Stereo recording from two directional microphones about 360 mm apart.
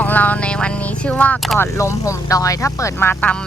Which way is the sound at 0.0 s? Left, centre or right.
Centre.